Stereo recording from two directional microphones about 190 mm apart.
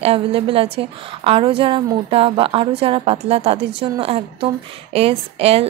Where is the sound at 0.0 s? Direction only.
30° right (ahead or behind).